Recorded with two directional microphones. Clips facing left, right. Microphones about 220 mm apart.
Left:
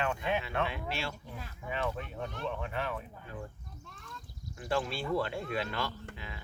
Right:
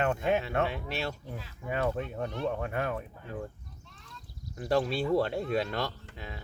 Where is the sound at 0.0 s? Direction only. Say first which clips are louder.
Right 5 dB; 45° right (ahead or behind).